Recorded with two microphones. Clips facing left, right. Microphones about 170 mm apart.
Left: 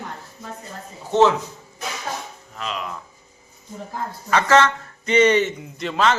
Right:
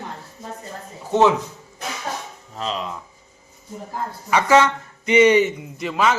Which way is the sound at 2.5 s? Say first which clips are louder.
Right 3 dB; 30° right (ahead or behind).